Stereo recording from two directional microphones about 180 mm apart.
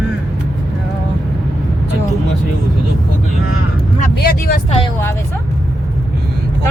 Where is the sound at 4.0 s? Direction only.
55° left (ahead or behind).